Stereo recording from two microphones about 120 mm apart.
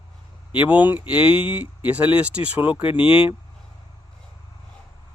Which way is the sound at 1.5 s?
10° right (ahead or behind).